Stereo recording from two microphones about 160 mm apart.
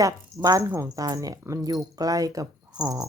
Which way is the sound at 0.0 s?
20° right (ahead or behind).